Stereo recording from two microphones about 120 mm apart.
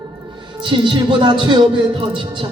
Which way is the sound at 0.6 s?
45° right (ahead or behind).